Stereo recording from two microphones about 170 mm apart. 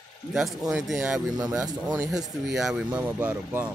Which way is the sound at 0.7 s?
5° right (ahead or behind).